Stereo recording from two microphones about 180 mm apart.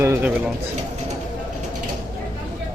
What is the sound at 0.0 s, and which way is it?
Speech, 10° right (ahead or behind).